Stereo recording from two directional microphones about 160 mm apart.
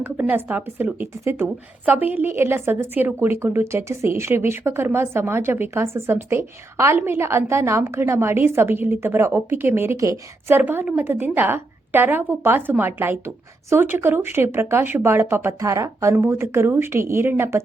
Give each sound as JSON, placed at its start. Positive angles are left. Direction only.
{"t": 0.0, "sound": "a woman's voice", "side_deg": -10}